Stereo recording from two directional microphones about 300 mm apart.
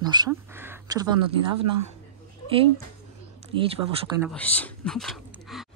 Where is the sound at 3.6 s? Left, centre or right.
Centre.